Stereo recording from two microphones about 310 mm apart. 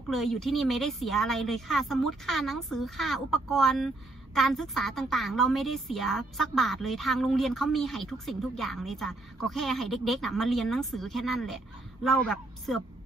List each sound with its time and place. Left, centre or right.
0.1 s a woman's voice: centre